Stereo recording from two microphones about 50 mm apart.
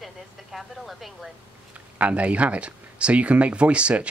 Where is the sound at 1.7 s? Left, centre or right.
Right.